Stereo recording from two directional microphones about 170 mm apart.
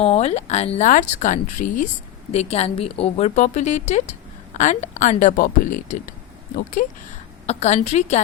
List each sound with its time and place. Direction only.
0.0 s a woman's voice: 40° left (ahead or behind)
6.8 s speech: 50° left (ahead or behind)
7.4 s a woman's voice: 40° left (ahead or behind)